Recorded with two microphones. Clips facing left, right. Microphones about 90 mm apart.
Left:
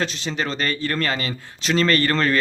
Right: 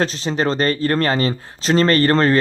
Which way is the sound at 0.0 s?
35° right (ahead or behind).